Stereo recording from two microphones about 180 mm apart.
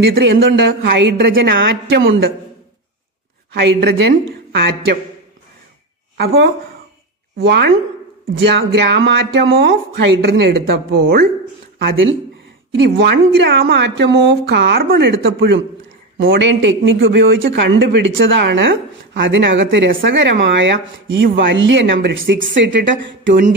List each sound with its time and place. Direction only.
0.1 s speech: 65° right (ahead or behind)
3.5 s speech: 70° right (ahead or behind)
6.1 s a woman's voice: 65° right (ahead or behind)
12.7 s a woman's voice: 65° right (ahead or behind); by 23.4 s 90° right